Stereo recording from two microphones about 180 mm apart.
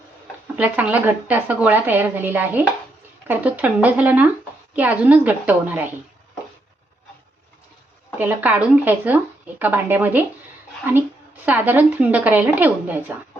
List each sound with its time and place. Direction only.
0.5 s a woman's voice: 10° right (ahead or behind)
8.2 s a woman's voice: 10° right (ahead or behind)